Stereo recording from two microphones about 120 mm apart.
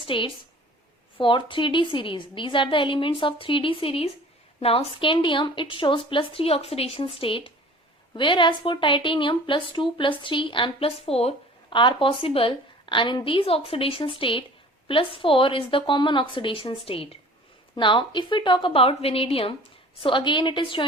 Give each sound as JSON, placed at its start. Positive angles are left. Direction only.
{"t": 0.0, "sound": "a woman's voice", "side_deg": 45}
{"t": 11.7, "sound": "a woman's voice", "side_deg": 40}